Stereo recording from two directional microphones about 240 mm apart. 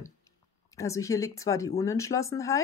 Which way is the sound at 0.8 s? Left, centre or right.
Centre.